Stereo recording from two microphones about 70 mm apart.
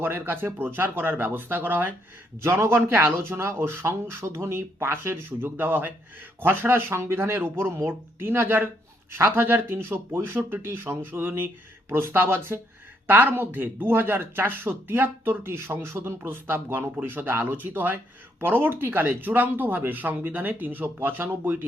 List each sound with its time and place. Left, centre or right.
0.0 s speech: right
2.4 s speech: right